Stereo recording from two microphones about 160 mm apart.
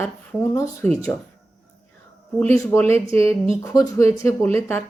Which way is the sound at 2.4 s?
15° left (ahead or behind).